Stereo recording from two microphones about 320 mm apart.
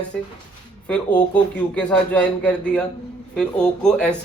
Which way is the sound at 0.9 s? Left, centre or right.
Centre.